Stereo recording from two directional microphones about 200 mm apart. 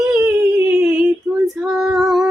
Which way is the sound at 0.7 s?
5° right (ahead or behind).